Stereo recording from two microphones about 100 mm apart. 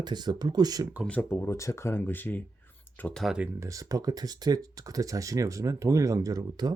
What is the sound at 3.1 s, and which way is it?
Speech, centre (ahead or behind).